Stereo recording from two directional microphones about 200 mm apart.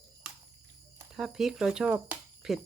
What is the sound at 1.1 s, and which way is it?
Speech, centre (ahead or behind).